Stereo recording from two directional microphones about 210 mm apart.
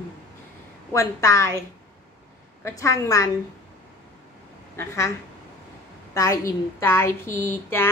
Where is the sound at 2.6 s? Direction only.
15° left (ahead or behind).